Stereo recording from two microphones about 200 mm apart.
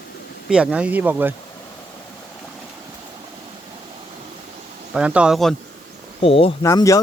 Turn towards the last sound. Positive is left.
turn(degrees=15)  # may be behind; listen again after turning